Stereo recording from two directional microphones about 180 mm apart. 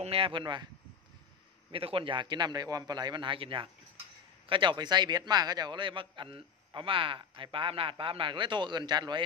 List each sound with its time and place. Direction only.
0.0 s a man's voice: 30° right (ahead or behind)
1.7 s a man's voice: 30° right (ahead or behind)